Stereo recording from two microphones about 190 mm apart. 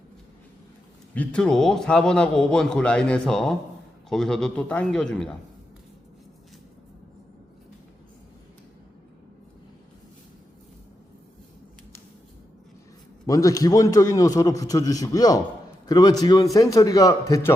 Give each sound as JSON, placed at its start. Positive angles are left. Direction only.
{"t": 1.1, "sound": "a man's voice", "side_deg": 5}
{"t": 13.2, "sound": "a man's voice", "side_deg": 15}